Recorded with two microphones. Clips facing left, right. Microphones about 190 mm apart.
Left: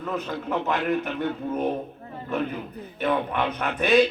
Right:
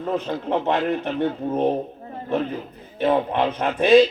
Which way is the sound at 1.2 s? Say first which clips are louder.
Right 5 dB; 30° right (ahead or behind).